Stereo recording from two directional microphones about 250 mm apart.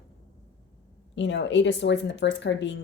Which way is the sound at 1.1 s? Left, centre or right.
Left.